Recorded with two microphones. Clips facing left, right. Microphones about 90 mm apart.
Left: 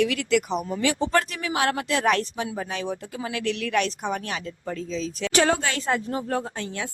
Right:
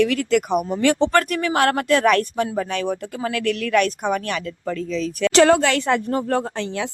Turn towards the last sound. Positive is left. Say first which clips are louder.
# right 6 dB
turn(degrees=-65)  # may be behind; listen again after turning